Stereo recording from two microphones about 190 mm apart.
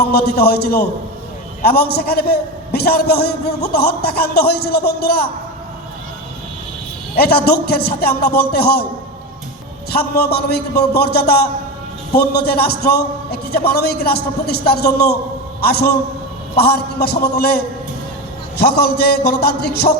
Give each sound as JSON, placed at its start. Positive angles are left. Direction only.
{"t": 0.1, "sound": "a man's voice", "side_deg": 55}
{"t": 7.2, "sound": "a man's voice", "side_deg": 55}
{"t": 9.9, "sound": "a man's voice", "side_deg": 55}